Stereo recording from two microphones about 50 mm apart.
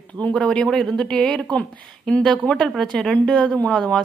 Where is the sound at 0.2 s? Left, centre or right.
Left.